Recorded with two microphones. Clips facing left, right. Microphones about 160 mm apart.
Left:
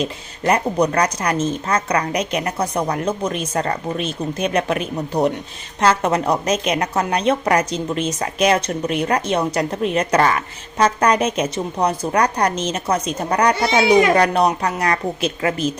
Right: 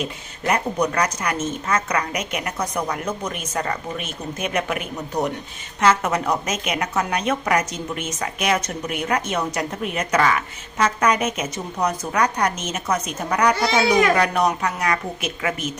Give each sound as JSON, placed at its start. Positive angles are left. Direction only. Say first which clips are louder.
{"t": 0.0, "sound": "speech", "louder": "left 5 dB", "side_deg": 35}